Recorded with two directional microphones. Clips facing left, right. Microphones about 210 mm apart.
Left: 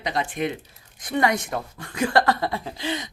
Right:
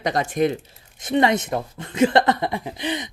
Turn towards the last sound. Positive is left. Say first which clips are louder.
# right 2 dB
turn(degrees=-20)  # may be behind; listen again after turning